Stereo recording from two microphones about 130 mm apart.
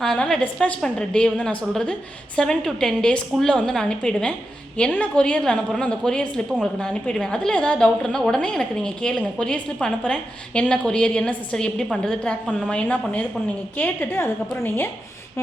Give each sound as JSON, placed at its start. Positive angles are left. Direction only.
{"t": 0.0, "sound": "a woman's voice", "side_deg": 5}